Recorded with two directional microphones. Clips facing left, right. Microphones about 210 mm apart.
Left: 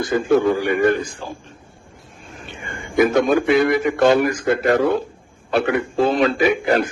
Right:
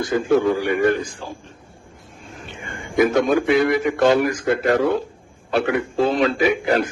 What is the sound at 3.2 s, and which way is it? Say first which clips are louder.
A man's voice: left 2 dB; 55° left (ahead or behind).